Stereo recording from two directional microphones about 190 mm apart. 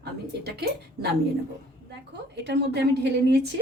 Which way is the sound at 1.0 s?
55° right (ahead or behind).